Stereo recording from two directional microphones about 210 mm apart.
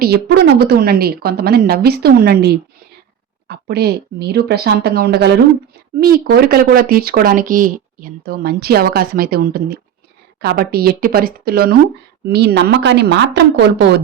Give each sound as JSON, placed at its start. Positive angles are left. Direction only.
{"t": 0.0, "sound": "speech", "side_deg": -50}